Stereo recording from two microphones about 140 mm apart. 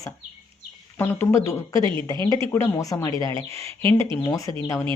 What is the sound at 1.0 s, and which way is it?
Speech, 20° left (ahead or behind).